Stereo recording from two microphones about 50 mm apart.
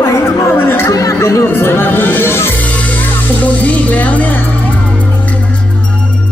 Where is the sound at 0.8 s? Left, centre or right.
Left.